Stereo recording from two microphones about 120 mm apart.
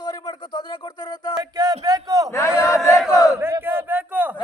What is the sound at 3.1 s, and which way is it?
Battle cry, 25° left (ahead or behind).